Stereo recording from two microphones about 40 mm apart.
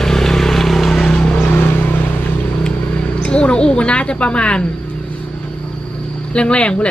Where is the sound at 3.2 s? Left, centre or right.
Left.